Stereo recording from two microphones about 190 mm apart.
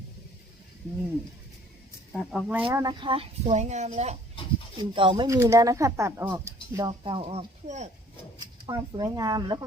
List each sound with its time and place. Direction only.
2.1 s speech: centre (ahead or behind)
2.7 s a woman's voice: 25° right (ahead or behind)
4.8 s speech: 25° right (ahead or behind)
8.4 s speech: 20° right (ahead or behind)